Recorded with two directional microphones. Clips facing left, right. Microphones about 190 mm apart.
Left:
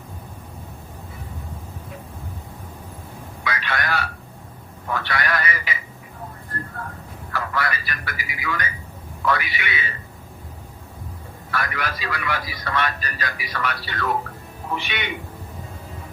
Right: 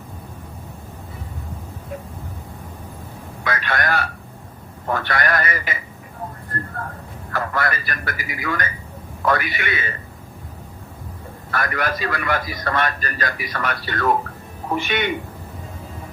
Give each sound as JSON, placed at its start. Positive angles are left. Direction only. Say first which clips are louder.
{"t": 3.4, "sound": "telephone", "louder": "right 3 dB", "side_deg": -50}
{"t": 4.9, "sound": "a man's voice", "louder": "right 3 dB", "side_deg": -50}
{"t": 7.3, "sound": "a man's voice", "louder": "right 3 dB", "side_deg": -50}
{"t": 11.5, "sound": "a man's voice", "louder": "right 4 dB", "side_deg": -50}